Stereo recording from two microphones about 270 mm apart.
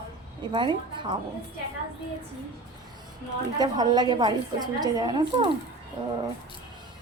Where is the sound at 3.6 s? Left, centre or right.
Centre.